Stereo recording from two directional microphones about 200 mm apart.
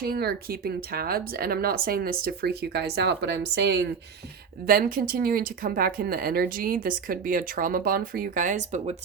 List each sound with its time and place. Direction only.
0.0 s speech: 50° right (ahead or behind)